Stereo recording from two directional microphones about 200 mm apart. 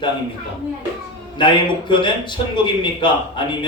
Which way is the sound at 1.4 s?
25° left (ahead or behind).